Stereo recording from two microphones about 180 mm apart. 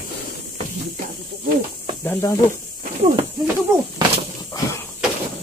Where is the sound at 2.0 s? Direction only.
15° left (ahead or behind).